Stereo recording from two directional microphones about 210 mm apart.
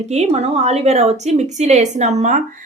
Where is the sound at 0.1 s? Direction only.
30° right (ahead or behind).